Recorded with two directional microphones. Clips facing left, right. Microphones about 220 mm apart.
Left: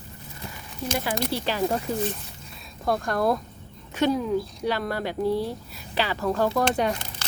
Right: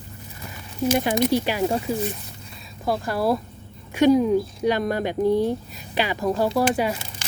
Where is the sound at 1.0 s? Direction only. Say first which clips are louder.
Right 5 dB; 20° right (ahead or behind).